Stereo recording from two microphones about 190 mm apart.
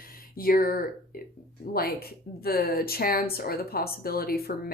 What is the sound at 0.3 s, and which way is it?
Speech, 50° left (ahead or behind).